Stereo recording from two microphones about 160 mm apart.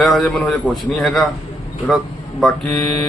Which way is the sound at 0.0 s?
Centre (ahead or behind).